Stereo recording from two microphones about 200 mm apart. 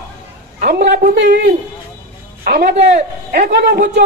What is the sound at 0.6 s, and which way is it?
Speech, 45° right (ahead or behind).